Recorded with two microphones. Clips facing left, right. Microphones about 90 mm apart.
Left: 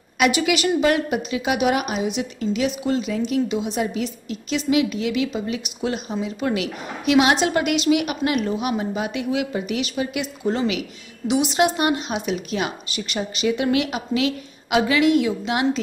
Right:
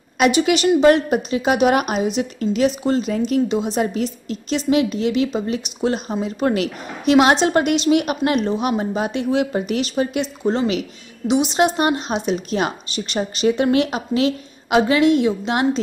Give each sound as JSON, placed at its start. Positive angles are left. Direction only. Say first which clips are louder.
{"t": 0.2, "sound": "a woman's voice", "louder": "right 3 dB", "side_deg": -30}